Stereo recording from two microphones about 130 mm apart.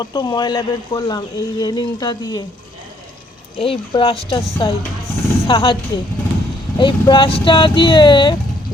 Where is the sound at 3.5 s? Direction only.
45° left (ahead or behind).